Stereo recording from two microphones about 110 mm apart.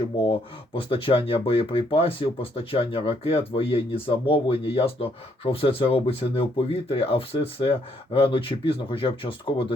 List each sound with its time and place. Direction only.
0.3 s speech: 50° left (ahead or behind)